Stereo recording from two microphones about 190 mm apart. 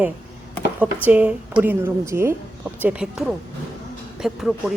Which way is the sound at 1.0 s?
10° right (ahead or behind).